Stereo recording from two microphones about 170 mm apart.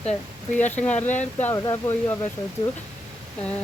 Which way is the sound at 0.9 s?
10° left (ahead or behind).